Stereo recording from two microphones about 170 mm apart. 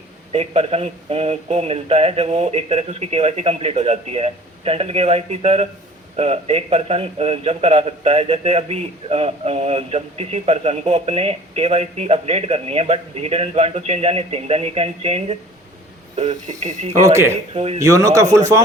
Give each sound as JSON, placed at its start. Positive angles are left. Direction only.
{"t": 0.3, "sound": "a man's voice", "side_deg": -35}
{"t": 16.5, "sound": "a man's voice", "side_deg": -45}
{"t": 17.7, "sound": "speech", "side_deg": -20}